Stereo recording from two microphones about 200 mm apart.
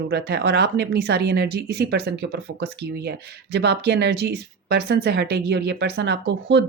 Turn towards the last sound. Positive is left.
turn(degrees=-55)  # may be behind; listen again after turning